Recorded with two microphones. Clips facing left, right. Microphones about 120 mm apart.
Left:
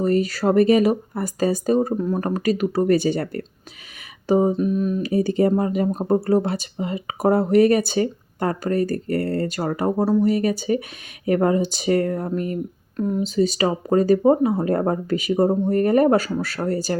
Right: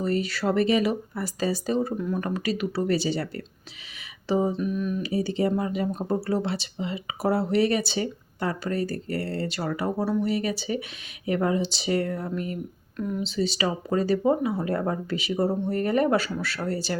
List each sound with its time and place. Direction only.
0.0 s speech: 45° left (ahead or behind)